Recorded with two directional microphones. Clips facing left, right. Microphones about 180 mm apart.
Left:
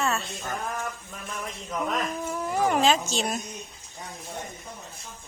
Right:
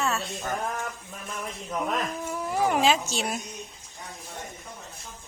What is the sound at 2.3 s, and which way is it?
Speech, 10° right (ahead or behind).